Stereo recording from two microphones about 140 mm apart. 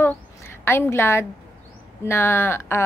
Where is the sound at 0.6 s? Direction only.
15° left (ahead or behind).